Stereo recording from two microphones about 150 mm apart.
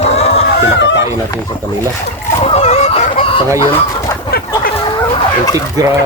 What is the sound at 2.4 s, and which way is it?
Chicken, 45° left (ahead or behind).